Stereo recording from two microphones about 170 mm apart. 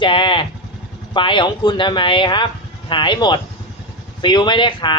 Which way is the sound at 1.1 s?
30° left (ahead or behind).